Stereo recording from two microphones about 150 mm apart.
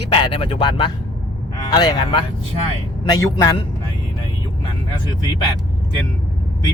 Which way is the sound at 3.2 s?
20° left (ahead or behind).